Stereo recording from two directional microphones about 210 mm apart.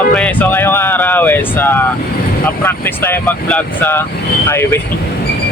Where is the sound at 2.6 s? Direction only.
10° left (ahead or behind).